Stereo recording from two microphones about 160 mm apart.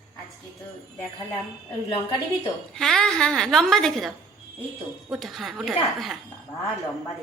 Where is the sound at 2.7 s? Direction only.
5° left (ahead or behind).